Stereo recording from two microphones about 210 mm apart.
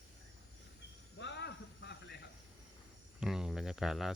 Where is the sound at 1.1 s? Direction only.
55° left (ahead or behind).